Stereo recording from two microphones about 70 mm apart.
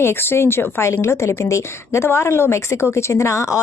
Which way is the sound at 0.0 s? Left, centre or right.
Left.